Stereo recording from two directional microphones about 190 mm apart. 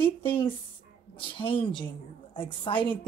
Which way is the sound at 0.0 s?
30° left (ahead or behind).